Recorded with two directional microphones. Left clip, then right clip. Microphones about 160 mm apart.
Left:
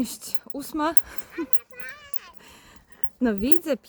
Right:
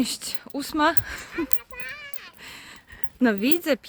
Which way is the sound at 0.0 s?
5° right (ahead or behind).